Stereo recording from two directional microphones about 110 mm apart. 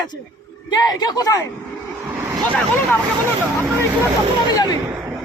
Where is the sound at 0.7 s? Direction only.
40° left (ahead or behind).